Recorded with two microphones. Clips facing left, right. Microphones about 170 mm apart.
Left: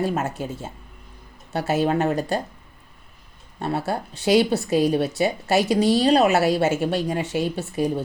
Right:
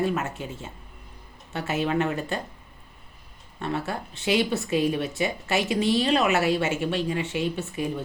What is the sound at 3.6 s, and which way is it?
A woman's voice, 40° left (ahead or behind).